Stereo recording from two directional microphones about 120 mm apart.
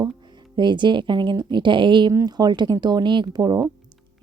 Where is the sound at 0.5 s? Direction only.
40° right (ahead or behind).